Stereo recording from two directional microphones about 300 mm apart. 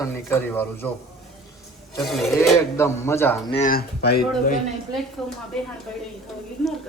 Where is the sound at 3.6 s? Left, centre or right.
Left.